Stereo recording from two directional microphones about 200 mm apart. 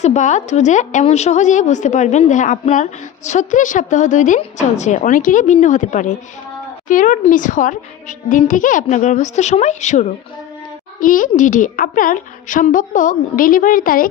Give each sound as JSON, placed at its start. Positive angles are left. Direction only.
{"t": 0.0, "sound": "a woman's voice", "side_deg": 35}